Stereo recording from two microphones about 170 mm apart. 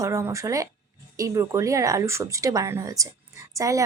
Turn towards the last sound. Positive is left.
turn(degrees=-20)  # may be behind; listen again after turning